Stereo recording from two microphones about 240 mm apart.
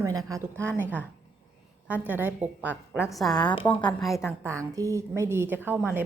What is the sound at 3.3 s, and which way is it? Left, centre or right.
Speech, centre.